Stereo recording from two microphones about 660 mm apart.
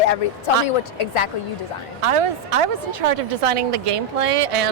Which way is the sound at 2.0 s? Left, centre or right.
Right.